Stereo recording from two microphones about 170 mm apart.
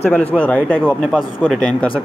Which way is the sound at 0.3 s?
10° left (ahead or behind).